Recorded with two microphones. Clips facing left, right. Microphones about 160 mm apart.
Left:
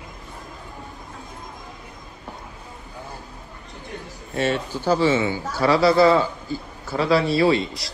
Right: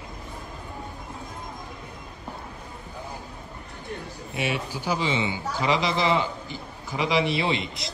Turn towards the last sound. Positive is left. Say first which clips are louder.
# left 6 dB
turn(degrees=-20)  # may be behind; listen again after turning